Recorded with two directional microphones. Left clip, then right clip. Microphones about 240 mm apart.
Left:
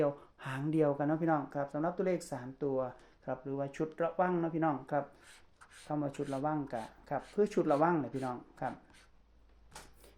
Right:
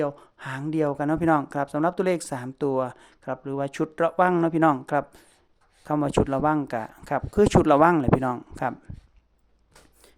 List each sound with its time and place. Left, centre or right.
0.0 s speech: centre; by 4.8 s right
4.9 s speech: right